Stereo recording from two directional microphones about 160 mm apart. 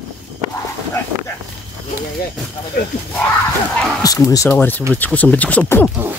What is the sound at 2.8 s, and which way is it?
Speech, 90° left.